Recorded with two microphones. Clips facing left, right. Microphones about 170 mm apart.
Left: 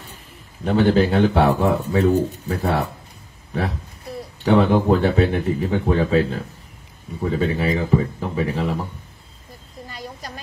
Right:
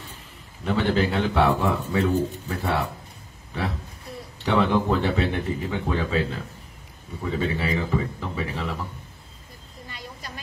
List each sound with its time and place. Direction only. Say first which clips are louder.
0.7 s speech: left 6 dB; 35° left (ahead or behind)
4.5 s speech: left 6 dB; 40° left (ahead or behind)
9.8 s a sound: left 5 dB; 40° left (ahead or behind)